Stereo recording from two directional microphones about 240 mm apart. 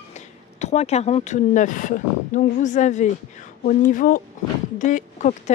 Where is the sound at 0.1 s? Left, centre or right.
Left.